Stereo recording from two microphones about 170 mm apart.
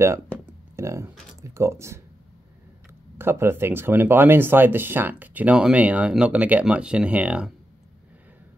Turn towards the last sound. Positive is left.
turn(degrees=-5)  # may be behind; listen again after turning